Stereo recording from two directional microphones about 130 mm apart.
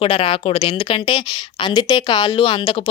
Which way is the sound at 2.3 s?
45° left (ahead or behind).